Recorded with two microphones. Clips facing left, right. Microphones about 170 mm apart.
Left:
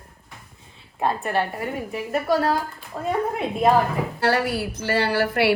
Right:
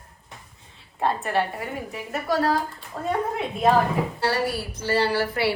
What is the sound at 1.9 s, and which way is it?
A woman's voice, centre (ahead or behind).